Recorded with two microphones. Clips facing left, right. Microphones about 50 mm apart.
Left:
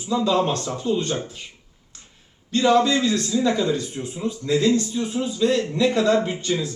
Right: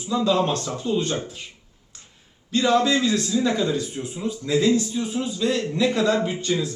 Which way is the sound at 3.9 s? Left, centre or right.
Centre.